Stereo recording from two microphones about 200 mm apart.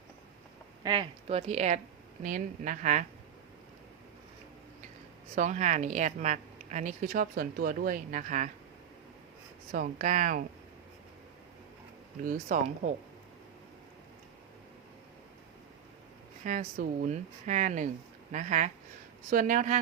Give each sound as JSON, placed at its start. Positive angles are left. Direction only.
{"t": 0.8, "sound": "a sound", "side_deg": -20}
{"t": 1.3, "sound": "speech", "side_deg": -35}
{"t": 5.3, "sound": "speech", "side_deg": -40}
{"t": 9.7, "sound": "speech", "side_deg": -45}
{"t": 12.2, "sound": "speech", "side_deg": -45}
{"t": 16.4, "sound": "speech", "side_deg": -40}